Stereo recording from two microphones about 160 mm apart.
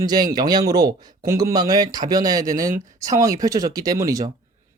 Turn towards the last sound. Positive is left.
turn(degrees=-20)  # may be behind; listen again after turning